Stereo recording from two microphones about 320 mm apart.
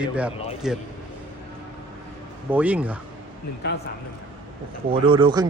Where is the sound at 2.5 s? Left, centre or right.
Centre.